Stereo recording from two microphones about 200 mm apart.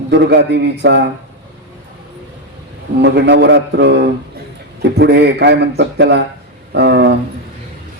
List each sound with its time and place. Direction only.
0.1 s speech: 60° right (ahead or behind)
3.0 s speech: 60° right (ahead or behind)